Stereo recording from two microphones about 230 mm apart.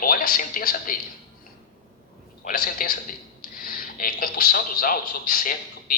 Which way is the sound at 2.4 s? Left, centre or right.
Left.